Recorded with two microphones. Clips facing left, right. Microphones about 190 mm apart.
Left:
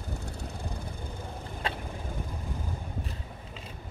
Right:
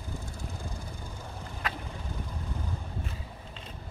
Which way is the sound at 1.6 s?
30° left (ahead or behind).